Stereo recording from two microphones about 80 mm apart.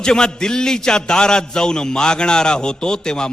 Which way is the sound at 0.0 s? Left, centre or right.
Centre.